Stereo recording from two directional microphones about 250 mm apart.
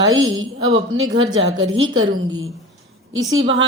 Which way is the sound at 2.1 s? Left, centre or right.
Centre.